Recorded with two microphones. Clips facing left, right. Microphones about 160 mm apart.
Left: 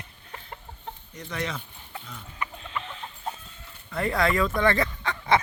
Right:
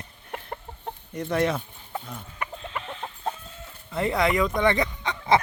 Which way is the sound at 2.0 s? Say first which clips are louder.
Right 1 dB; 45° right (ahead or behind).